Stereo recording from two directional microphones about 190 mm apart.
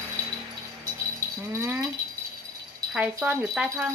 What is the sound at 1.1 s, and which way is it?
Rattle, 15° right (ahead or behind).